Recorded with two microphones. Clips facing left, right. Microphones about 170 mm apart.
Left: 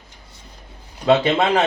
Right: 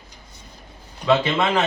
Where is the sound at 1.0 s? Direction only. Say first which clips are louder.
Left 3 dB; 35° left (ahead or behind).